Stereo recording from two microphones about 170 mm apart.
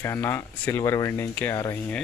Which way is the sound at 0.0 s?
15° left (ahead or behind).